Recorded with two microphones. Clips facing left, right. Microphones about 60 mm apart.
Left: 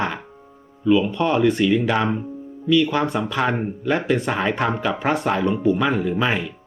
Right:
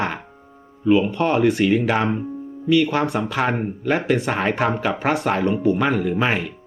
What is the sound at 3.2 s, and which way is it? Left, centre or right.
Speech, right.